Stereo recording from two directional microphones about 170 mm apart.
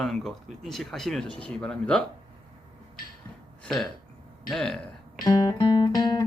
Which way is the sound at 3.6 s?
Centre (ahead or behind).